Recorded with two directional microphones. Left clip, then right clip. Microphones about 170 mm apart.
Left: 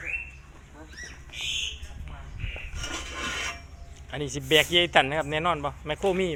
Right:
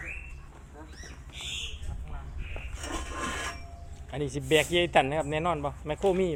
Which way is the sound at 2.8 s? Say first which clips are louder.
Left 2 dB; 40° right (ahead or behind).